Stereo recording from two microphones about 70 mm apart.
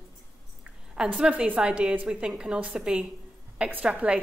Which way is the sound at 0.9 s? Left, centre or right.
Centre.